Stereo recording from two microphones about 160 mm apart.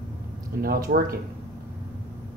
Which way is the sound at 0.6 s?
75° right (ahead or behind).